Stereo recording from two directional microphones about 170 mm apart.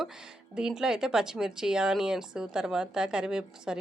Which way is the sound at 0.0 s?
5° right (ahead or behind).